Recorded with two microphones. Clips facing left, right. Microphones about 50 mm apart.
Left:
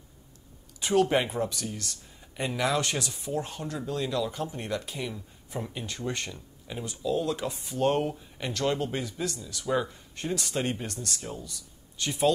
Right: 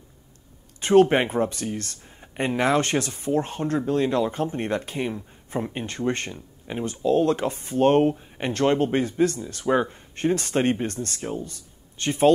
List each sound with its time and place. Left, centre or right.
0.7 s speech: right